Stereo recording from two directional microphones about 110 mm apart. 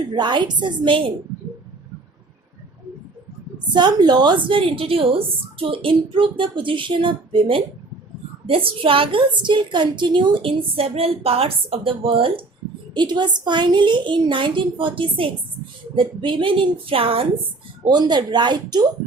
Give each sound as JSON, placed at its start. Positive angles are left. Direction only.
{"t": 0.1, "sound": "a woman's voice", "side_deg": -45}
{"t": 3.7, "sound": "a woman's voice", "side_deg": -40}
{"t": 12.9, "sound": "a woman's voice", "side_deg": -45}
{"t": 17.8, "sound": "speech", "side_deg": -40}